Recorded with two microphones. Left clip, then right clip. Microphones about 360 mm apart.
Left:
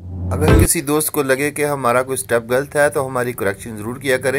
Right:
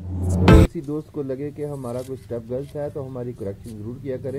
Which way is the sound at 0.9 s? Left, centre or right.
Left.